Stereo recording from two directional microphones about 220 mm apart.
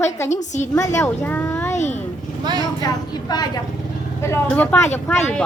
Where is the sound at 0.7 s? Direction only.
15° left (ahead or behind).